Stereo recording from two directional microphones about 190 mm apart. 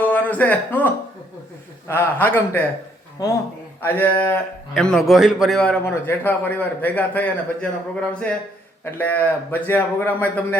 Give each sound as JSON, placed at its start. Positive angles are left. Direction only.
{"t": 0.0, "sound": "speech", "side_deg": 10}
{"t": 1.9, "sound": "a man's voice", "side_deg": 10}